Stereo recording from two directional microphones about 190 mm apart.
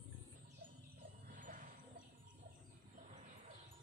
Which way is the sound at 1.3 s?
45° right (ahead or behind).